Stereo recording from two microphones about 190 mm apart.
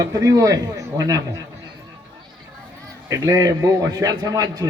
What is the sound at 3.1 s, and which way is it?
A man's voice, 20° right (ahead or behind).